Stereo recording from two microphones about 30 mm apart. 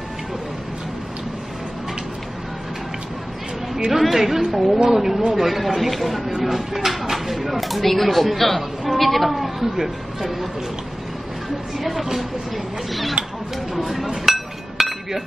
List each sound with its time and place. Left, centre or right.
4.1 s a woman's voice: centre
4.8 s a woman's voice: centre
11.8 s speech: centre
13.2 s speech: right
13.7 s chink: centre